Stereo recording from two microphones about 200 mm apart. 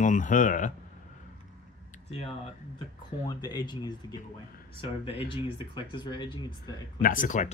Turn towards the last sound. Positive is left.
turn(degrees=40)  # may be behind; listen again after turning